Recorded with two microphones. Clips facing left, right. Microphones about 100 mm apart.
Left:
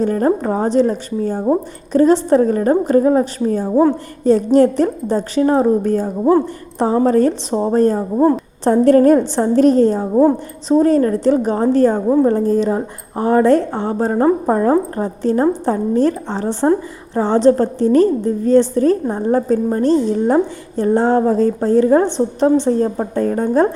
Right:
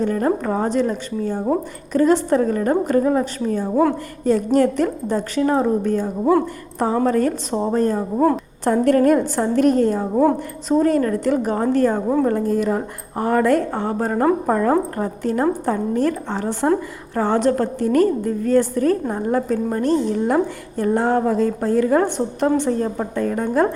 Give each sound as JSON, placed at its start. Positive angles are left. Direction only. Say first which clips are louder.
{"t": 0.0, "sound": "a woman's voice", "louder": "left 4 dB", "side_deg": 35}